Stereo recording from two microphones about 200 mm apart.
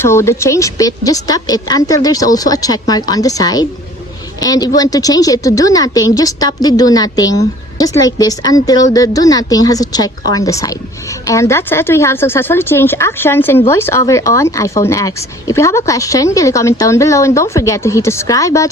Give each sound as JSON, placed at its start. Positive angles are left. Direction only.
{"t": 0.0, "sound": "speech", "side_deg": 15}